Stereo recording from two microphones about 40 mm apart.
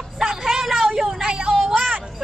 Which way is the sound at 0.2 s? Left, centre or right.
Centre.